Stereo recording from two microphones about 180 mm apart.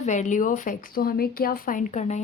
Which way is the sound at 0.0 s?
40° left (ahead or behind).